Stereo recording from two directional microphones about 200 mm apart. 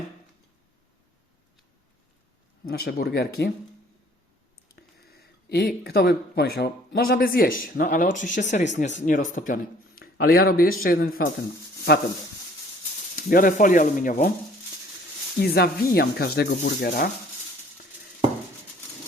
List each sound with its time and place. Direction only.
2.6 s speech: 50° left (ahead or behind)
4.7 s speech: 50° left (ahead or behind)
10.0 s speech: 50° left (ahead or behind)
13.1 s speech: 45° left (ahead or behind)
15.4 s speech: 50° left (ahead or behind)